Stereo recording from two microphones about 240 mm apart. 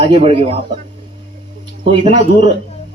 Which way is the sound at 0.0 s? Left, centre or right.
Right.